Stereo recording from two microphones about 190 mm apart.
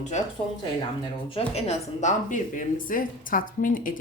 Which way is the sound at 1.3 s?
35° left (ahead or behind).